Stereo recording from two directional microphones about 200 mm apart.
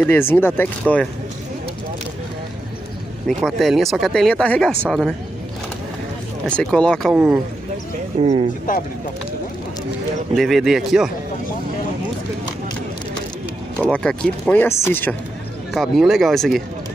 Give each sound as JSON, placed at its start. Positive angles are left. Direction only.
{"t": 0.0, "sound": "speech", "side_deg": 10}
{"t": 3.3, "sound": "speech", "side_deg": 0}
{"t": 6.4, "sound": "speech", "side_deg": 5}
{"t": 8.2, "sound": "speech", "side_deg": -25}
{"t": 10.3, "sound": "speech", "side_deg": 0}
{"t": 13.8, "sound": "speech", "side_deg": 0}
{"t": 15.7, "sound": "speech", "side_deg": 0}